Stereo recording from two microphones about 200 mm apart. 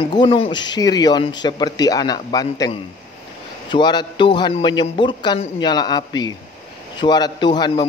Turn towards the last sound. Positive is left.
turn(degrees=20)  # may be behind; listen again after turning